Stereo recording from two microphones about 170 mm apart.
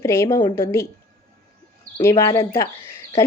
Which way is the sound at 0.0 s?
15° left (ahead or behind).